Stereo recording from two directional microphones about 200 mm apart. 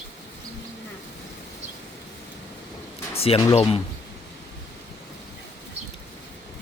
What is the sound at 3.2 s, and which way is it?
Speech, 30° left (ahead or behind).